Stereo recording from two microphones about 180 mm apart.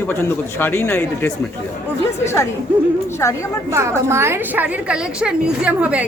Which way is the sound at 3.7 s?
15° right (ahead or behind).